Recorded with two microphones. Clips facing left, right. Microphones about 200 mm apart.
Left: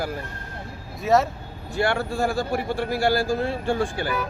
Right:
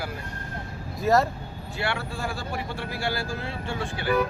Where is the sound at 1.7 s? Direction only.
45° left (ahead or behind).